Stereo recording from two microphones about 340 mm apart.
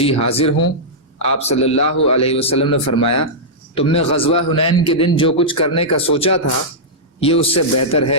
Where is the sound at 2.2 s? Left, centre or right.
Centre.